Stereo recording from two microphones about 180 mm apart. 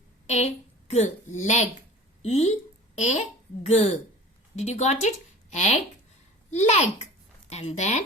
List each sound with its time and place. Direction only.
0.3 s a woman's voice: 40° left (ahead or behind)